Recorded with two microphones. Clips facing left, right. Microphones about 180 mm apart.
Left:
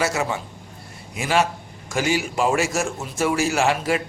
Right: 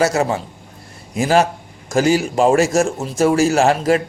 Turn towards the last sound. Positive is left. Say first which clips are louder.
# right 6 dB
turn(degrees=-40)  # may be behind; listen again after turning